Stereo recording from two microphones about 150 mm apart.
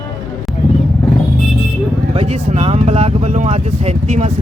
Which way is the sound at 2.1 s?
45° right (ahead or behind).